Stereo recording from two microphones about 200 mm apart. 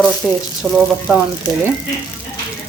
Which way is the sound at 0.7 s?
10° right (ahead or behind).